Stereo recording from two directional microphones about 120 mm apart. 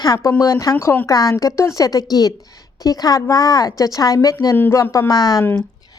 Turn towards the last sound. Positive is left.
turn(degrees=35)  # may be behind; listen again after turning